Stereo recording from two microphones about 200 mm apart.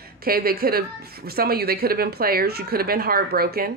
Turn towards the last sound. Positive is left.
turn(degrees=-50)  # may be behind; listen again after turning